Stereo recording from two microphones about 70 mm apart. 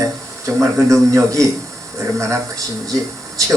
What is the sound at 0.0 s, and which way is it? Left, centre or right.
A man's voice, right.